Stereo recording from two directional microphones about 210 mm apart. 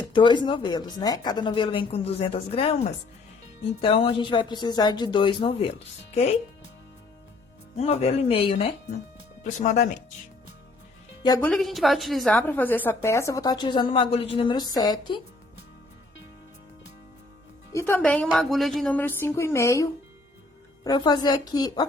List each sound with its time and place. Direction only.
0.0 s speech: 20° left (ahead or behind)
3.8 s speech: 25° left (ahead or behind)
7.8 s speech: 30° left (ahead or behind)
11.4 s a woman's voice: centre (ahead or behind); by 15.2 s 20° left (ahead or behind)
17.7 s a woman's voice: 10° left (ahead or behind)